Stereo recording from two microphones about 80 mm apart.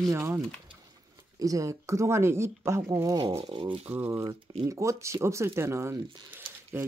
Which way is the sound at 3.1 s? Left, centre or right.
Right.